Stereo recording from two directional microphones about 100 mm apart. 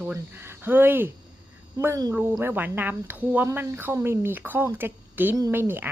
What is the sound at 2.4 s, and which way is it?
Speech, 20° right (ahead or behind).